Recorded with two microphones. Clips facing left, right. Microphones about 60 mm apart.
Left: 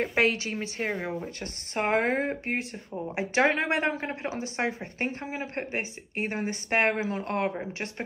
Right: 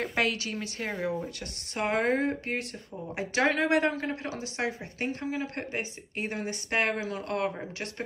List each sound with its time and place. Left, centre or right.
0.1 s speech: left